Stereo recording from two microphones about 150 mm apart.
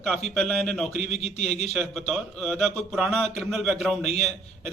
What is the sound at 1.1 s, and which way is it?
Speech, 50° left (ahead or behind).